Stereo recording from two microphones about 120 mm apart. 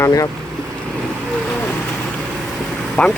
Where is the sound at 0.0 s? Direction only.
30° left (ahead or behind).